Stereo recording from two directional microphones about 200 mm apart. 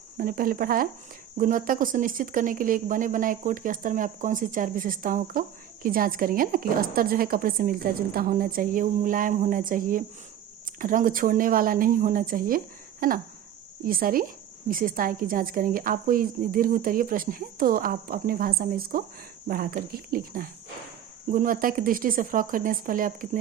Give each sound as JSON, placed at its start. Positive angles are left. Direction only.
{"t": 0.2, "sound": "speech", "side_deg": -45}